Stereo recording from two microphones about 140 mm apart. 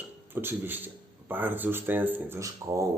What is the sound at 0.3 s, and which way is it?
Speech, 15° right (ahead or behind).